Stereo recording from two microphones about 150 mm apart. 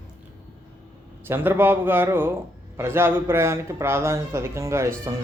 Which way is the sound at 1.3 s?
15° right (ahead or behind).